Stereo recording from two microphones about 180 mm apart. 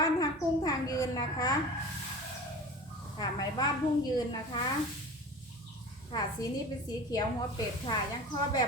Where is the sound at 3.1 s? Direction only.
20° left (ahead or behind).